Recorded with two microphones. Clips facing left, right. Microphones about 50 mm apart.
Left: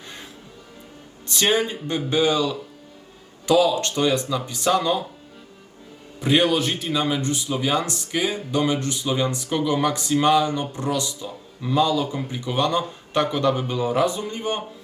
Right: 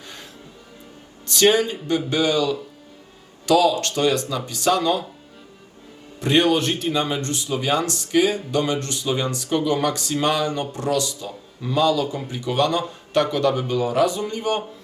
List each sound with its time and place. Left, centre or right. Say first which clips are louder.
1.3 s speech: right 4 dB; left
6.1 s speech: right 1 dB; centre; by 14.6 s left